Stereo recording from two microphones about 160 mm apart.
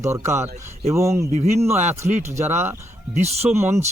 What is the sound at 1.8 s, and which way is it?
Speech, 45° right (ahead or behind).